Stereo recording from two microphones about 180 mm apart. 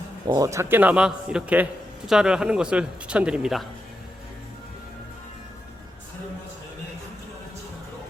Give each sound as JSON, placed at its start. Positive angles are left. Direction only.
{"t": 0.3, "sound": "a man's voice", "side_deg": -20}